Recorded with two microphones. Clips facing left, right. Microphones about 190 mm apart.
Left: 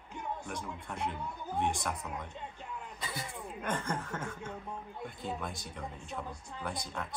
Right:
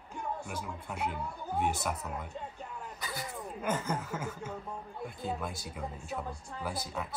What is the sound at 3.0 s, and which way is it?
Speech, 25° left (ahead or behind).